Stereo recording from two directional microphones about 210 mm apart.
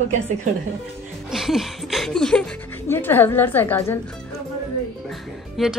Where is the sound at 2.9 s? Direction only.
10° left (ahead or behind).